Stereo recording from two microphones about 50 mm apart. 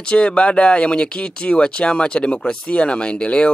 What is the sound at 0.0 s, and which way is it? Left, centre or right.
Speech, left.